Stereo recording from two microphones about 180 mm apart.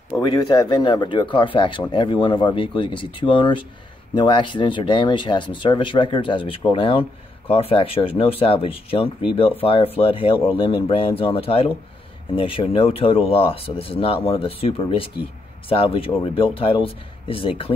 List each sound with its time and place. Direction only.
0.2 s speech: 25° left (ahead or behind)